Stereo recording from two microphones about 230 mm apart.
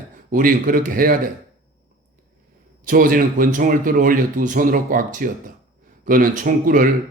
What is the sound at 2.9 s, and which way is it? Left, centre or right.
Speech, right.